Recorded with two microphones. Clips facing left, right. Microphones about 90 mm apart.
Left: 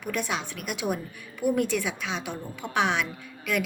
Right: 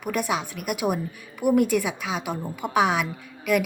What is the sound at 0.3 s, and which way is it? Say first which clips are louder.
A woman's voice: right 5 dB; 10° right (ahead or behind).